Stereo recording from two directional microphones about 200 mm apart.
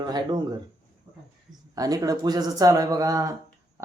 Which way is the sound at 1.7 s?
20° right (ahead or behind).